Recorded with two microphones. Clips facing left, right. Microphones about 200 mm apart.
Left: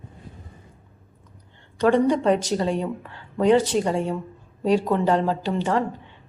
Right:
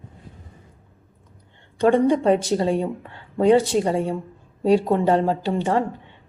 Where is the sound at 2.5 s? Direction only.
30° right (ahead or behind).